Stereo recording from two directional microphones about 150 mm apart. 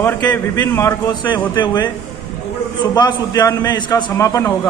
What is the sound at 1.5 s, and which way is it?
A man's voice, 30° left (ahead or behind).